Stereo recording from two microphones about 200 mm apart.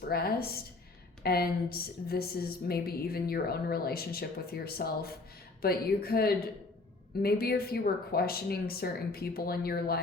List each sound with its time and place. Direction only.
0.1 s speech: 50° left (ahead or behind)